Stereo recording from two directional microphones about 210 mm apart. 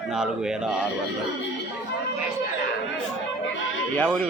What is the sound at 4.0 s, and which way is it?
Speech, 5° left (ahead or behind).